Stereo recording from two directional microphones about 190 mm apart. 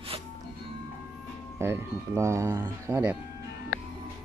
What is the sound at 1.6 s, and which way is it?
Speech, 15° right (ahead or behind).